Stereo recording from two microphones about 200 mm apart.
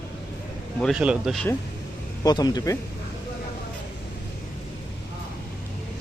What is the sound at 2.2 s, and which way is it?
Speech, 20° left (ahead or behind).